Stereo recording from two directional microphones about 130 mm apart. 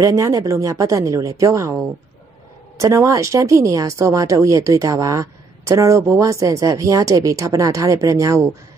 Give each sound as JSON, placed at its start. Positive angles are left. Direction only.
{"t": 0.0, "sound": "speech", "side_deg": -25}
{"t": 2.8, "sound": "speech", "side_deg": -25}